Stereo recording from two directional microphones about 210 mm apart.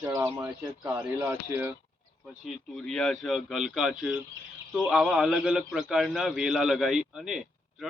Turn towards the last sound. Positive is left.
turn(degrees=0)  # may be behind; listen again after turning